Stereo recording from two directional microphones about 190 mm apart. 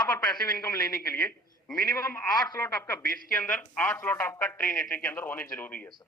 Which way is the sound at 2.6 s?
10° left (ahead or behind).